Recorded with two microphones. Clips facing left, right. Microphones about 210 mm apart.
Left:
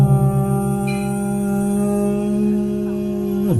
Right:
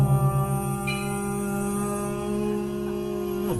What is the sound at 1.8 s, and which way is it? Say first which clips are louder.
Music: left 10 dB; 35° left (ahead or behind).